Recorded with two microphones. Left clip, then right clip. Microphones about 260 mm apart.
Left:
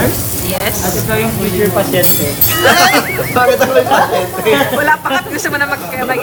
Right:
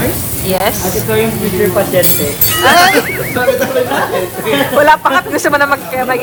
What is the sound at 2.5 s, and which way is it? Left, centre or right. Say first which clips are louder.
Speech: right 1 dB; centre.